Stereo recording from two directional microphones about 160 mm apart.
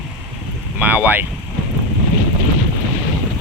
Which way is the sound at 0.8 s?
10° right (ahead or behind).